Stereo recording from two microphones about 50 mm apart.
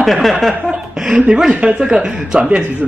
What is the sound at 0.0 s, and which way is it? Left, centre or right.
Speech, centre.